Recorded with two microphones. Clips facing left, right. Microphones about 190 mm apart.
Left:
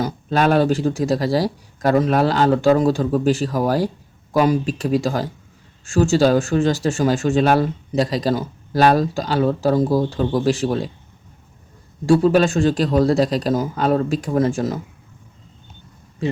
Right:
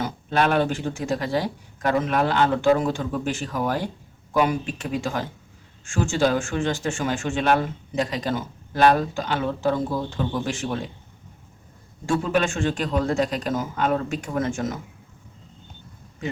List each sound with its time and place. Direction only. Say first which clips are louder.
0.0 s speech: left 4 dB; 40° left (ahead or behind)
12.0 s speech: left 8 dB; 35° left (ahead or behind)